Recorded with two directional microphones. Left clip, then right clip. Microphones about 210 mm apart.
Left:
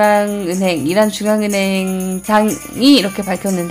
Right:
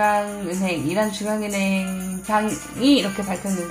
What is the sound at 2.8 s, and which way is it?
Speech, 25° left (ahead or behind).